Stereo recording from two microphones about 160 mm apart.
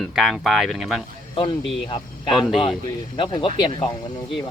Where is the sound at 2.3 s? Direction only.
Centre (ahead or behind).